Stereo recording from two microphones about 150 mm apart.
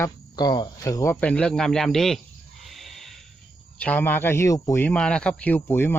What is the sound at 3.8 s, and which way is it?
Speech, 10° left (ahead or behind).